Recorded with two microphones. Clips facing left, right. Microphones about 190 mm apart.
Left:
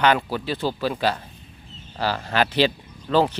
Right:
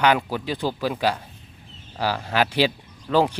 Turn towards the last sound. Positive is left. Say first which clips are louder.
# even
turn(degrees=-10)  # may be behind; listen again after turning